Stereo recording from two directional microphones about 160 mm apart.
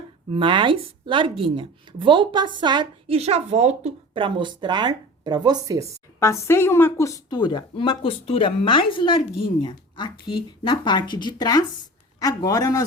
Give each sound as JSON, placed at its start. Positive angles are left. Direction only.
{"t": 0.3, "sound": "a woman's voice", "side_deg": -30}
{"t": 6.1, "sound": "a woman's voice", "side_deg": 15}